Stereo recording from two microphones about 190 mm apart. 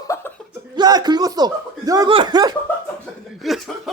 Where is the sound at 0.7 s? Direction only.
20° right (ahead or behind).